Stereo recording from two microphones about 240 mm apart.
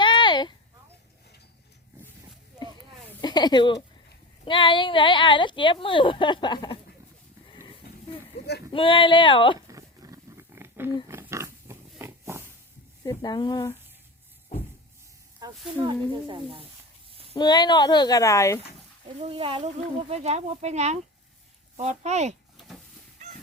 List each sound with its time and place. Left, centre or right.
0.0 s a sound: centre
3.1 s a woman's voice: centre
8.4 s a sound: left
8.7 s a woman's voice: left
9.6 s a sound: centre
11.1 s wild animals: centre
13.1 s speech: centre
15.4 s speech: centre
17.3 s speech: centre
19.2 s speech: right